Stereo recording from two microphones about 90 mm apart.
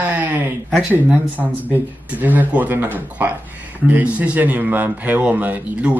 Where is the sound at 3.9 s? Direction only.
15° right (ahead or behind).